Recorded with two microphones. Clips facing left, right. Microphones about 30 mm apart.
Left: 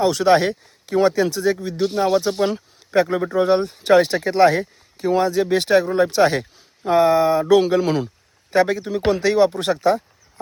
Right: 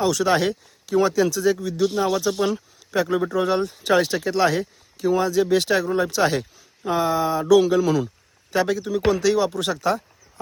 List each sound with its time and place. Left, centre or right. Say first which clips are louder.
0.0 s a man's voice: left 4 dB; left
9.5 s speech: left 3 dB; left